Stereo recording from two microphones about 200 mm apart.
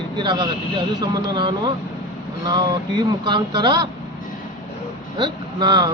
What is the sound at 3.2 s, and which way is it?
Speech, 20° right (ahead or behind).